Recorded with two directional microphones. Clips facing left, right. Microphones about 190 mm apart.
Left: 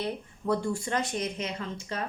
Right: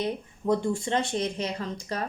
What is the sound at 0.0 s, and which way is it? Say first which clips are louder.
A woman's voice: right 3 dB; 20° right (ahead or behind).